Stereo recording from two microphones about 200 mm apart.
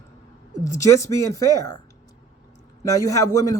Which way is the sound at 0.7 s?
15° left (ahead or behind).